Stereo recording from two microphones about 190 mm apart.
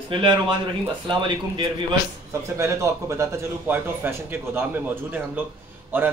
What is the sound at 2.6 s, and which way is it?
A man's voice, 15° right (ahead or behind).